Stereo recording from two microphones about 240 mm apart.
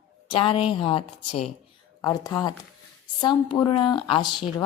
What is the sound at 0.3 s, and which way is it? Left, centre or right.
A woman's voice, left.